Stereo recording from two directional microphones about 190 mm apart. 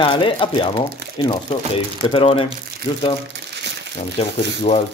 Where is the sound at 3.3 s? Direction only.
65° right (ahead or behind).